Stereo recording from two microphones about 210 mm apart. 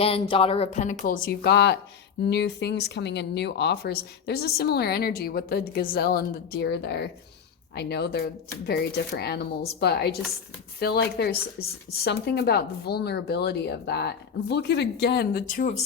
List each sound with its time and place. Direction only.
0.0 s speech: 25° left (ahead or behind)